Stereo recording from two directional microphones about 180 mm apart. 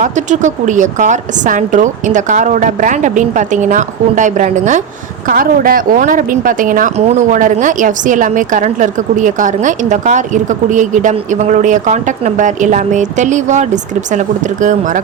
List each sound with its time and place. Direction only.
0.0 s a woman's voice: 45° right (ahead or behind)
5.3 s a woman's voice: 50° right (ahead or behind)